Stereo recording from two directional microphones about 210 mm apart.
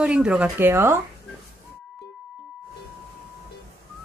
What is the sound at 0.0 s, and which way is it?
Speech, 5° right (ahead or behind).